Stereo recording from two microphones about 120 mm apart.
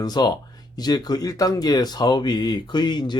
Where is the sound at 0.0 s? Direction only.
35° left (ahead or behind).